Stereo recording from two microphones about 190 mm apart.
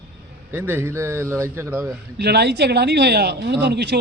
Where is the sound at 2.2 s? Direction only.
60° right (ahead or behind).